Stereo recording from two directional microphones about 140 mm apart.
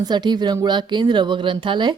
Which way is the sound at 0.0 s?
30° right (ahead or behind).